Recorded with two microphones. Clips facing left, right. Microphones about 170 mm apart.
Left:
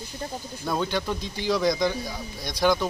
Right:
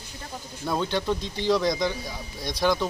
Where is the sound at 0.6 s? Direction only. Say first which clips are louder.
Right 1 dB; centre (ahead or behind).